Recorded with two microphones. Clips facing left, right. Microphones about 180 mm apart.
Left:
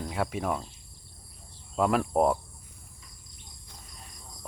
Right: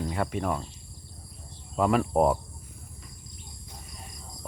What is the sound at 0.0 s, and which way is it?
Speech, centre (ahead or behind).